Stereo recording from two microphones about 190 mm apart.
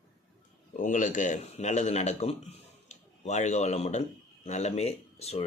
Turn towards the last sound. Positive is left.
turn(degrees=35)  # may be behind; listen again after turning